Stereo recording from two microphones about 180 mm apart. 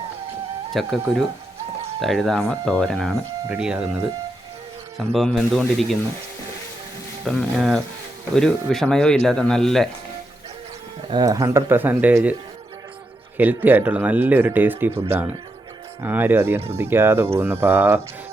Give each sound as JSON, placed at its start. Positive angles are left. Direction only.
{"t": 0.7, "sound": "speech", "side_deg": 0}
{"t": 5.1, "sound": "speech", "side_deg": 0}
{"t": 7.3, "sound": "speech", "side_deg": 0}
{"t": 11.1, "sound": "speech", "side_deg": -20}
{"t": 16.0, "sound": "speech", "side_deg": -10}